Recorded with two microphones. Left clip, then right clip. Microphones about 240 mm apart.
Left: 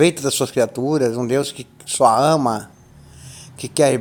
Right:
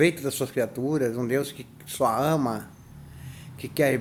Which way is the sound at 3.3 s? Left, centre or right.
Left.